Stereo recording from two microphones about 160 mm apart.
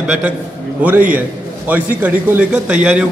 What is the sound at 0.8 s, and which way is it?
A man's voice, 10° right (ahead or behind).